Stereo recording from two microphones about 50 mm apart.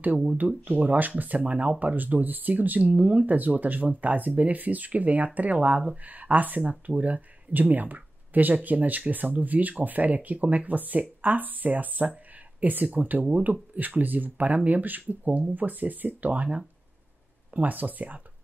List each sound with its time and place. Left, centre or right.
0.5 s speech: right
17.6 s speech: right